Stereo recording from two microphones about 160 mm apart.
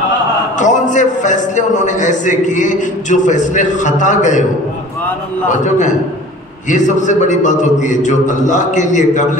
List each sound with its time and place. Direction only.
0.6 s a man's voice: 50° left (ahead or behind)
5.5 s a man's voice: 50° left (ahead or behind)